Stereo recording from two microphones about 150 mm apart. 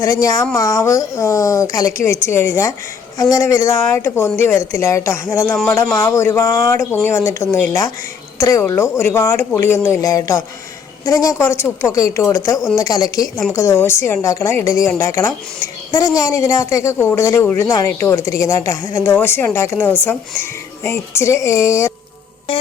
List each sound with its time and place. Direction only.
0.0 s speech: 20° left (ahead or behind)